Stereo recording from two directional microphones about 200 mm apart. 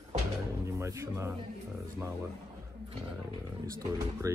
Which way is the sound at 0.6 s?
15° right (ahead or behind).